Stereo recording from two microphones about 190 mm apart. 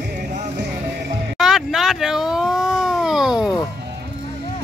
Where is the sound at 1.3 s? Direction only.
Centre (ahead or behind).